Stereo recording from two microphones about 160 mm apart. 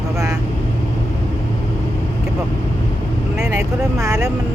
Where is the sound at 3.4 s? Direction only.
20° right (ahead or behind).